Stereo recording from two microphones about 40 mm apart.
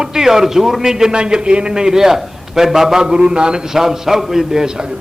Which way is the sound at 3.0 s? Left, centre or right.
Right.